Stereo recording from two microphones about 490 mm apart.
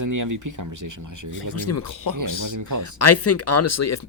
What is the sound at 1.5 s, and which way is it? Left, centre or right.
Speech, left.